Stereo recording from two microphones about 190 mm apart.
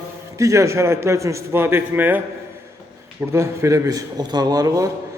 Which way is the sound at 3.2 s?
15° right (ahead or behind).